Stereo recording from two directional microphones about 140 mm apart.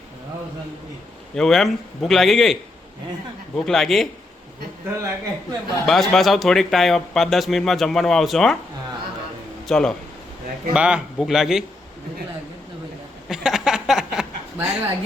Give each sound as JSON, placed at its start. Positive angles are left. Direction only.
{"t": 1.4, "sound": "speech", "side_deg": 0}
{"t": 4.9, "sound": "a man's voice", "side_deg": -15}
{"t": 5.8, "sound": "speech", "side_deg": 0}
{"t": 9.6, "sound": "speech", "side_deg": 5}
{"t": 10.8, "sound": "speech", "side_deg": -10}
{"t": 13.2, "sound": "a sound", "side_deg": -5}